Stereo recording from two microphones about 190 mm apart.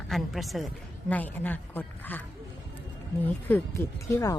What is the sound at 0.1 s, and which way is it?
A woman's voice, centre (ahead or behind).